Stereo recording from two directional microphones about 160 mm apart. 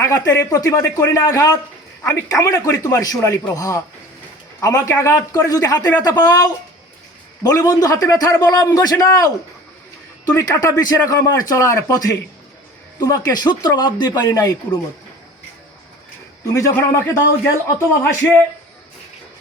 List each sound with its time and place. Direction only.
0.0 s a man's voice: 20° left (ahead or behind)
10.3 s a man's voice: 20° left (ahead or behind)
16.6 s a man's voice: 20° left (ahead or behind)